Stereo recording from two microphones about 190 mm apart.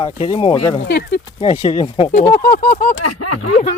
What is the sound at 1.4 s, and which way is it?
Speech, 30° left (ahead or behind).